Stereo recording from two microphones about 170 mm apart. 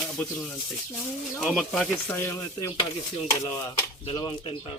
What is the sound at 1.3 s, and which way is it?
Speech, 5° left (ahead or behind).